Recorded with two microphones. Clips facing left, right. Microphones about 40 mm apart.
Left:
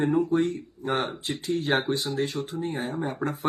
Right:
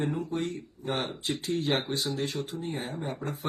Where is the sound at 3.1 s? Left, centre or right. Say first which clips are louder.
Left 6 dB; left.